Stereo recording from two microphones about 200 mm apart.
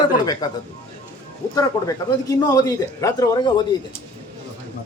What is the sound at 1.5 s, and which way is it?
Speech, 20° left (ahead or behind).